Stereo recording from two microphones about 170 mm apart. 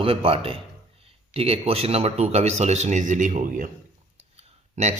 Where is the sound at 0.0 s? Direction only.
30° right (ahead or behind); by 3.7 s 50° right (ahead or behind).